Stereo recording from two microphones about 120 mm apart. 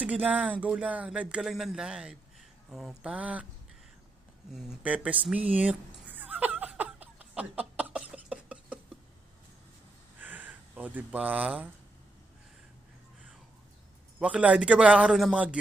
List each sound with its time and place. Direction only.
0.0 s speech: 10° right (ahead or behind)
4.5 s cat: 5° right (ahead or behind)
10.2 s speech: 15° right (ahead or behind)
14.2 s speech: 10° right (ahead or behind)